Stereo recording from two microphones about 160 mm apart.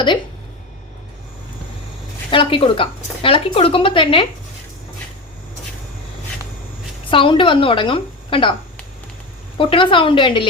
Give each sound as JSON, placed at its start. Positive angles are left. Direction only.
{"t": 2.3, "sound": "speech", "side_deg": 35}
{"t": 7.1, "sound": "speech", "side_deg": 30}
{"t": 9.6, "sound": "speech", "side_deg": 30}